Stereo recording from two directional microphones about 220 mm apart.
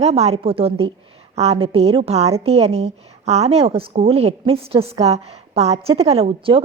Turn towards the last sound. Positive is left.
turn(degrees=-25)  # may be behind; listen again after turning